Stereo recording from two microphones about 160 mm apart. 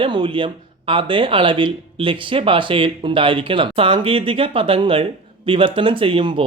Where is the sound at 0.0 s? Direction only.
30° right (ahead or behind).